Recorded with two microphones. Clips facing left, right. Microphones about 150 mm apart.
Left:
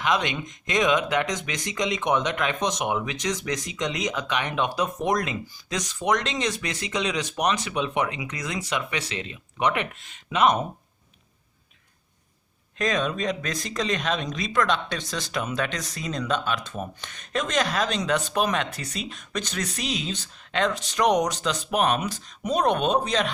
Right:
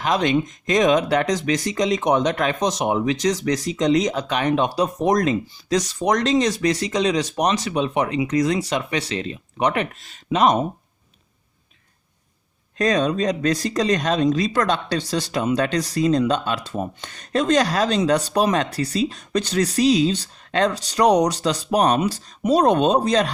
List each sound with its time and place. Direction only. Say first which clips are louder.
0.0 s speech: right 6 dB; 40° right (ahead or behind)
12.7 s speech: right 6 dB; 35° right (ahead or behind)